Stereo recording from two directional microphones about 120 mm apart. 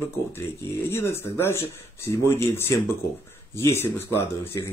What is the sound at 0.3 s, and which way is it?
Speech, 20° left (ahead or behind).